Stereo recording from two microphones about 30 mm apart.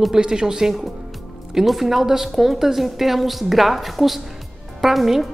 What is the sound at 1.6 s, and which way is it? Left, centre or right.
A woman's voice, centre.